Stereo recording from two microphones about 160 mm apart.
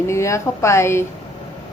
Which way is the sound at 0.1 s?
20° left (ahead or behind).